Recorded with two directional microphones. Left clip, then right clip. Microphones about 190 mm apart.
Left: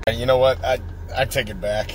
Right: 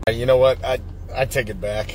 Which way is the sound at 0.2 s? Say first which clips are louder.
Right 2 dB; 25° right (ahead or behind).